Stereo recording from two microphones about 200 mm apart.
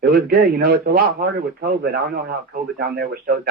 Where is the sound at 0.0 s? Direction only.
50° right (ahead or behind).